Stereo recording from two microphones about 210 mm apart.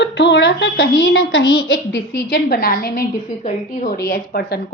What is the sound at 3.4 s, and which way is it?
Speech, 35° left (ahead or behind).